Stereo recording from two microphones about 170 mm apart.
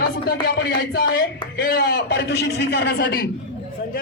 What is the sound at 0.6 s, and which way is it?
A man's voice, 85° left.